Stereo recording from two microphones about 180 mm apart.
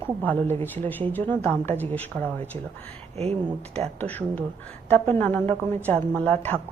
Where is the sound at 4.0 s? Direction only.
10° left (ahead or behind).